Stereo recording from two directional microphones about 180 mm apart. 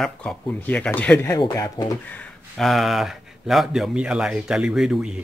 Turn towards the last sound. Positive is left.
turn(degrees=-5)  # may be behind; listen again after turning